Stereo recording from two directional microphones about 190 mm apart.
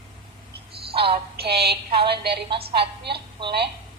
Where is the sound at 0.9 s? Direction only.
30° right (ahead or behind).